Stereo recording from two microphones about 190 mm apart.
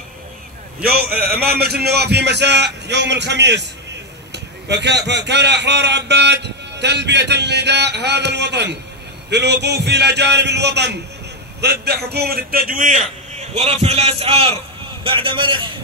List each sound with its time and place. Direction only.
0.8 s a man's voice: 55° right (ahead or behind)
13.6 s a man's voice: 35° right (ahead or behind)